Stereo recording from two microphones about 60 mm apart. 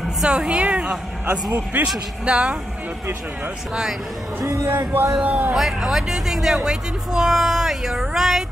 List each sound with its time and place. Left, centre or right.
0.2 s a woman's voice: centre
4.6 s speech: right
5.2 s a woman's voice: right
5.6 s speech: centre